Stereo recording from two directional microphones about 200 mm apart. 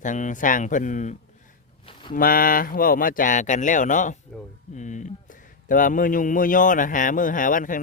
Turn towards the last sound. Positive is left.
turn(degrees=40)  # may be behind; listen again after turning